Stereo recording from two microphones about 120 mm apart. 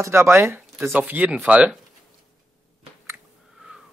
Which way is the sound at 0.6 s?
5° right (ahead or behind).